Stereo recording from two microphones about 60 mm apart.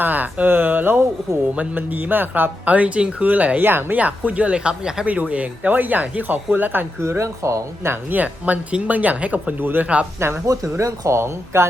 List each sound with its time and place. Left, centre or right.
0.0 s speech: right; by 5.0 s centre
5.0 s speech: right
7.0 s speech: right
8.1 s speech: right
9.8 s speech: right
10.2 s speech: right
10.4 s speech: right
11.2 s speech: right